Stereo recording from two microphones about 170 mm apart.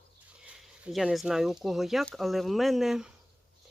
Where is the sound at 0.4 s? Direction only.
Centre (ahead or behind).